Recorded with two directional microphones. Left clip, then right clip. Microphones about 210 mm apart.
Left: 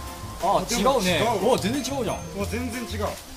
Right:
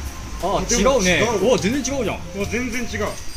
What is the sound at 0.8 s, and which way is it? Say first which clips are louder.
Speech: right 5 dB; 50° left (ahead or behind).